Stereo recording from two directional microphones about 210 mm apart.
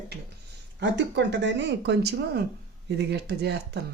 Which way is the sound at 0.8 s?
55° right (ahead or behind).